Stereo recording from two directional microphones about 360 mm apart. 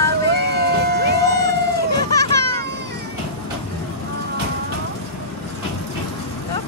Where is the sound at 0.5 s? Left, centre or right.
Right.